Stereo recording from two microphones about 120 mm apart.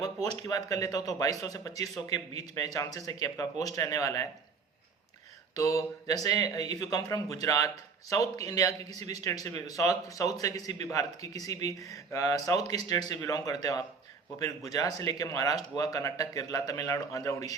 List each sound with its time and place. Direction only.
0.0 s speech: 30° left (ahead or behind)
5.5 s speech: 25° left (ahead or behind)